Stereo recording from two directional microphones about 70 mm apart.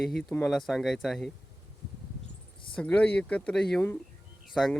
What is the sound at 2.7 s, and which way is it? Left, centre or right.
Speech, centre.